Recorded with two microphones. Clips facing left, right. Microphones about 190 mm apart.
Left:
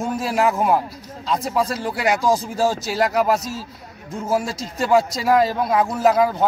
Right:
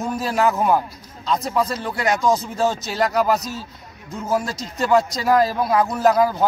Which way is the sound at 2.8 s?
5° left (ahead or behind).